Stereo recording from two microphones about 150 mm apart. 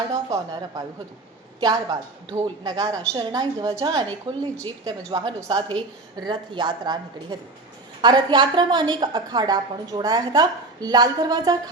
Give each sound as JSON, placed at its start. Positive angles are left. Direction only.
{"t": 0.1, "sound": "a woman's voice", "side_deg": -25}